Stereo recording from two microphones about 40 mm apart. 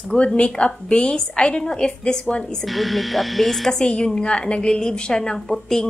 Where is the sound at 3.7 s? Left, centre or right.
Centre.